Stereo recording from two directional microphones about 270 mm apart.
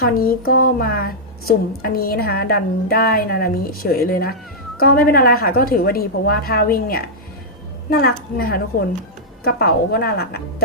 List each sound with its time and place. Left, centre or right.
0.0 s a woman's voice: left